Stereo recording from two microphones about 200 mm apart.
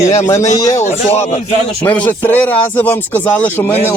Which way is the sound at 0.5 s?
20° left (ahead or behind).